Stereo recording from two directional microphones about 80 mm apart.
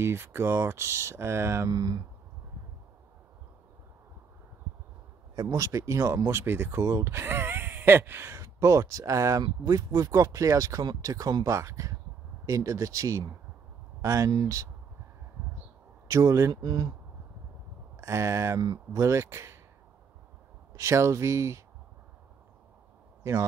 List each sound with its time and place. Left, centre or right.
0.0 s speech: right
1.7 s speech: right
5.3 s speech: right
16.1 s speech: right
16.6 s speech: right
17.9 s speech: right
20.7 s speech: right